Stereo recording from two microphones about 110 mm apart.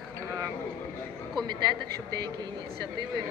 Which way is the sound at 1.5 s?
40° right (ahead or behind).